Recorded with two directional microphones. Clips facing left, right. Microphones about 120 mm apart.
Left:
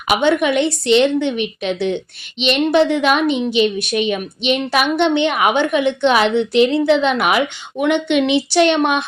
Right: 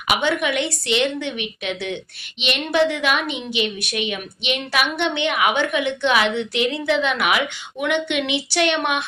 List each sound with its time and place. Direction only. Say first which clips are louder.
0.1 s a woman's voice: left 6 dB; 30° left (ahead or behind)